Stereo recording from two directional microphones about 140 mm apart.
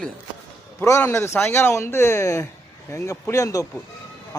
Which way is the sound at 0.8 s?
20° left (ahead or behind).